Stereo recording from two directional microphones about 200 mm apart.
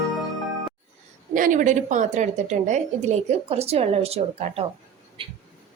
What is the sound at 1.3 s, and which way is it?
A woman's voice, 40° right (ahead or behind).